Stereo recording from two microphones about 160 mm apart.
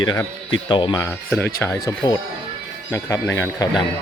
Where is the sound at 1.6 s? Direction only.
20° left (ahead or behind).